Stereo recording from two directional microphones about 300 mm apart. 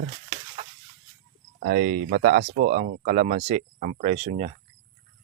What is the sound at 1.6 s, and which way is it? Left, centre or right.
Speech, right.